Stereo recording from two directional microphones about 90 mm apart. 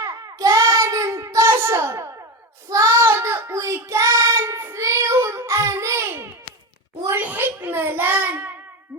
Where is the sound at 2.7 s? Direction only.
30° right (ahead or behind).